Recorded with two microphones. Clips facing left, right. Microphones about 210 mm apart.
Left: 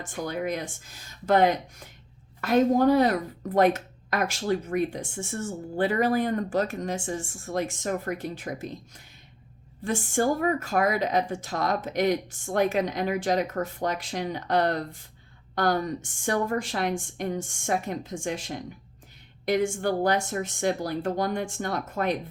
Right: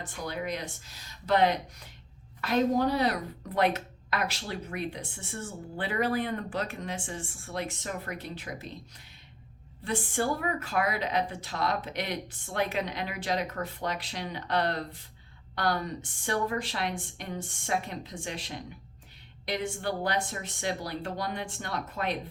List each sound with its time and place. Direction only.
0.0 s speech: 50° left (ahead or behind)
9.8 s speech: 45° left (ahead or behind)